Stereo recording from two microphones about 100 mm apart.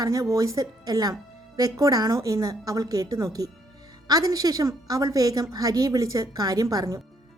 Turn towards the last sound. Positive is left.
turn(degrees=-35)  # may be behind; listen again after turning